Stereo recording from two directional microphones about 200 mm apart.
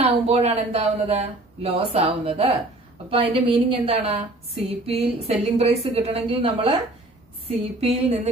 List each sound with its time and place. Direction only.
0.0 s a woman's voice: 30° right (ahead or behind)